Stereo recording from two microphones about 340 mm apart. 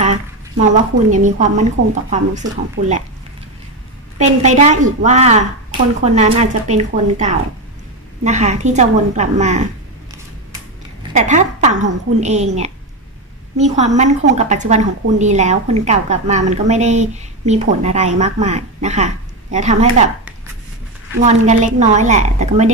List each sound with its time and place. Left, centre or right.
0.0 s a sound: right
1.1 s a woman's voice: right
4.2 s a woman's voice: centre
11.1 s a woman's voice: right
21.2 s a woman's voice: right